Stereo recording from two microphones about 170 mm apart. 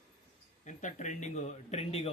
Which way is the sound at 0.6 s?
45° left (ahead or behind).